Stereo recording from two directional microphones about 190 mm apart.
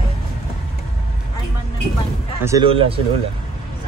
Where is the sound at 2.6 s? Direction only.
30° right (ahead or behind).